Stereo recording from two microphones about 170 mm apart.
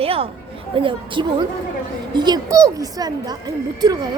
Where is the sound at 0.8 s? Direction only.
30° right (ahead or behind).